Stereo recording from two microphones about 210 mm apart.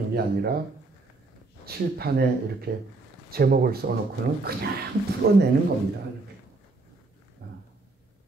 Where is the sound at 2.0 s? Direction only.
45° right (ahead or behind).